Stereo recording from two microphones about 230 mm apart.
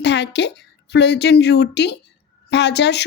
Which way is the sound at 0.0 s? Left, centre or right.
Left.